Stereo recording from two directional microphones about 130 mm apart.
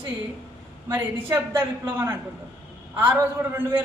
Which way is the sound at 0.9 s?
15° right (ahead or behind).